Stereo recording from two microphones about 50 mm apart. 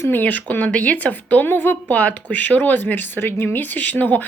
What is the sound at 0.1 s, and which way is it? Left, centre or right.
Speech, left.